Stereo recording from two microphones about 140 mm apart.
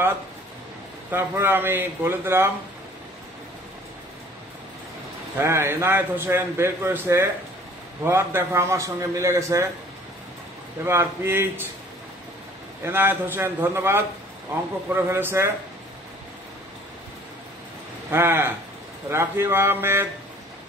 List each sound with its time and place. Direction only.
1.1 s a man's voice: 15° right (ahead or behind)
5.4 s a man's voice: 15° right (ahead or behind)
10.9 s a man's voice: 15° right (ahead or behind)
12.8 s a man's voice: 15° right (ahead or behind)
18.1 s a man's voice: 15° right (ahead or behind)